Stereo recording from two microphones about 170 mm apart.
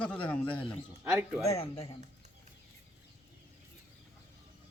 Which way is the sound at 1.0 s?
10° right (ahead or behind).